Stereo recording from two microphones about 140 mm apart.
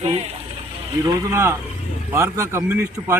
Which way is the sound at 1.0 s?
20° right (ahead or behind).